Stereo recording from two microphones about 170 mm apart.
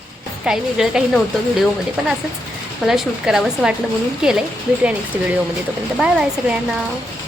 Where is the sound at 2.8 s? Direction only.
Centre (ahead or behind).